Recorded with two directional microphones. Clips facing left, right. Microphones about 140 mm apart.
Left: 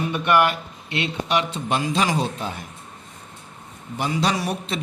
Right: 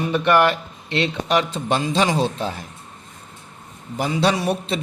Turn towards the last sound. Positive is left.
turn(degrees=-25)  # may be behind; listen again after turning